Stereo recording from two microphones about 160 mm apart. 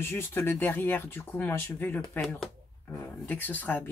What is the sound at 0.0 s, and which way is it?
Speech, 15° left (ahead or behind).